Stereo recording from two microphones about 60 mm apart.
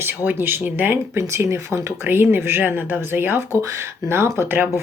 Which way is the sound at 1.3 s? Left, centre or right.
Right.